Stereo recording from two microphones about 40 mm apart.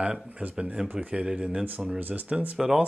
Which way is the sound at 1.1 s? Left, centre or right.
Right.